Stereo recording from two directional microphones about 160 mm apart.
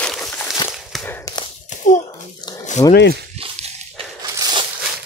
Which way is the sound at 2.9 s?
80° left.